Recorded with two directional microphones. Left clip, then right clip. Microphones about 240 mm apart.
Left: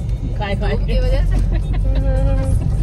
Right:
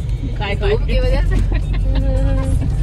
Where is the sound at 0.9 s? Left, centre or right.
Right.